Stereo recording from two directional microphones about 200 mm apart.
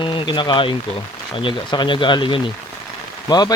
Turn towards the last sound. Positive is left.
turn(degrees=20)  # may be behind; listen again after turning